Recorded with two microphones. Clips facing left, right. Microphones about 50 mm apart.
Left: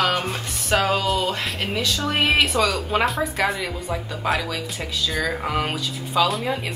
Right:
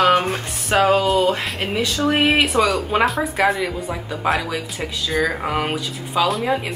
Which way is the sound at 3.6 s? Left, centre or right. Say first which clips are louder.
Right 2 dB; centre.